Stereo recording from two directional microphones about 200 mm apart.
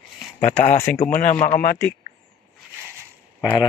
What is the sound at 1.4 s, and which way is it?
Speech, 40° left (ahead or behind).